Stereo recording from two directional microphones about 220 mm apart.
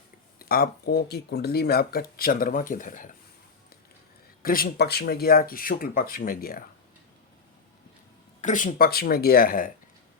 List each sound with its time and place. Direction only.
0.3 s speech: 40° left (ahead or behind)
4.4 s speech: 40° left (ahead or behind)
8.4 s speech: 35° left (ahead or behind)